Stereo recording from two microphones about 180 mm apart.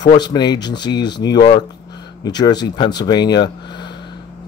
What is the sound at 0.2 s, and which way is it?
Speech, 25° left (ahead or behind).